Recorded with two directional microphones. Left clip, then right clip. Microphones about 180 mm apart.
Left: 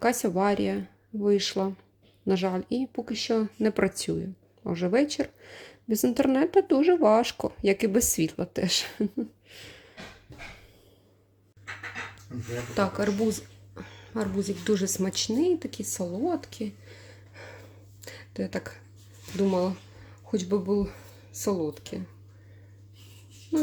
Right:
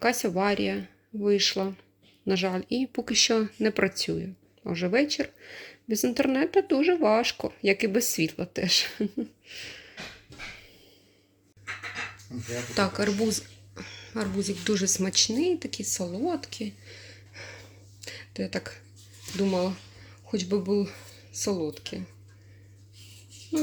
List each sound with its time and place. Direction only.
0.0 s speech: 15° left (ahead or behind)
2.9 s speech: 5° right (ahead or behind)
12.7 s speech: 5° left (ahead or behind)